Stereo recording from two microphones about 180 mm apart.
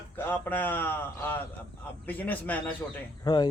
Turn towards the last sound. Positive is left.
turn(degrees=25)  # may be behind; listen again after turning